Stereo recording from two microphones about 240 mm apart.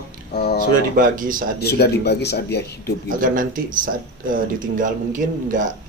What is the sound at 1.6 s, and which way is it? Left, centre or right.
Speech, left.